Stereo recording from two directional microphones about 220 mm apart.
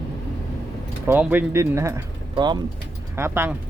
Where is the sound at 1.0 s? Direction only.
10° right (ahead or behind).